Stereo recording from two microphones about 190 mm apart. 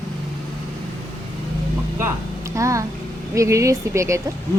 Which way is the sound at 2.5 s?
15° right (ahead or behind).